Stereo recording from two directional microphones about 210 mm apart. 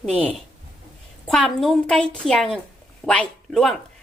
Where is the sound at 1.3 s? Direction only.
5° left (ahead or behind).